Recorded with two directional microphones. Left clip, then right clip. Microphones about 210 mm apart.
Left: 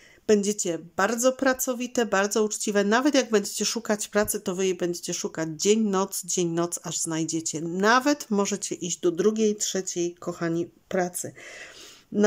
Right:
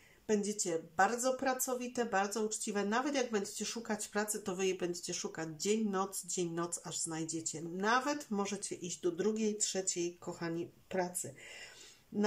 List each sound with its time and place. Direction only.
0.3 s speech: 40° left (ahead or behind)